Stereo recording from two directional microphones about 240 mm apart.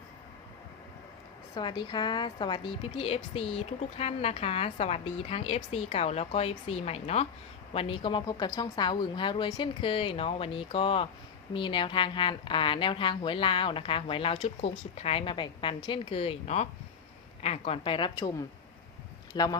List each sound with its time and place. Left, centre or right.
1.5 s a woman's voice: centre